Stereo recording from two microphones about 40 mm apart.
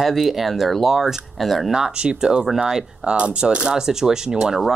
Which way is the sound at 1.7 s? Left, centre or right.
Centre.